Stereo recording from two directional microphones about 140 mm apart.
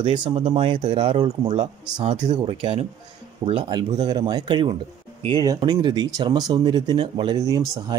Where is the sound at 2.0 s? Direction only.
45° right (ahead or behind); by 7.9 s 25° right (ahead or behind).